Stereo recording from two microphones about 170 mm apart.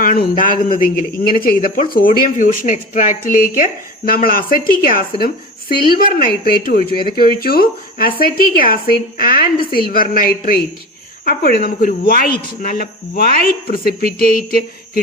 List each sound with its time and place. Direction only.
0.0 s a man's voice: 55° left (ahead or behind)